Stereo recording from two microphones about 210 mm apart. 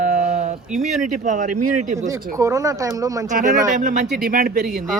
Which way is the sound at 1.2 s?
35° right (ahead or behind).